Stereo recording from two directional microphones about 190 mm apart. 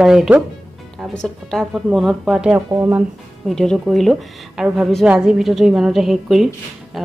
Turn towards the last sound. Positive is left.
turn(degrees=0)  # may be behind; listen again after turning